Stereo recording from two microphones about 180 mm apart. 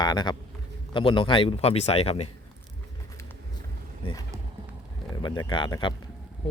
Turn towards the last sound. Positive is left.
turn(degrees=25)  # may be behind; listen again after turning